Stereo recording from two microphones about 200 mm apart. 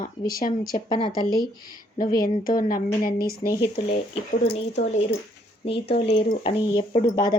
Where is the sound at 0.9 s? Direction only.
25° left (ahead or behind).